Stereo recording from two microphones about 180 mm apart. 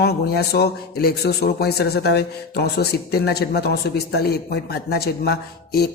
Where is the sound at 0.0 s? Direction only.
65° left (ahead or behind).